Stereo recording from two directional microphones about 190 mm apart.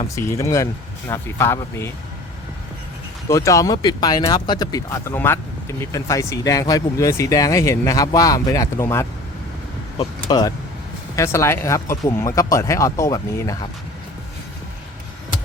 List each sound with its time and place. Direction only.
0.0 s speech: 15° left (ahead or behind)
3.2 s speech: 15° left (ahead or behind)